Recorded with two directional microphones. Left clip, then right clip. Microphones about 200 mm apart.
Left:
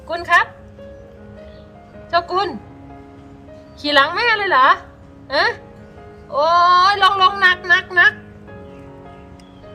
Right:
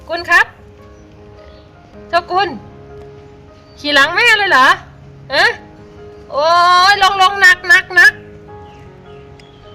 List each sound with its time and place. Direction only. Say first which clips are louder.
0.1 s a woman's voice: right 4 dB; 15° right (ahead or behind)
2.0 s a woman's voice: right 4 dB; 10° right (ahead or behind)
3.8 s a woman's voice: right 4 dB; 10° right (ahead or behind)